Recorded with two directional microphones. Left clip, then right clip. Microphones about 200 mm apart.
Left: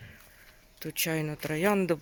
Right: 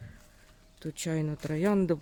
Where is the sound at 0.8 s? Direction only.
10° right (ahead or behind).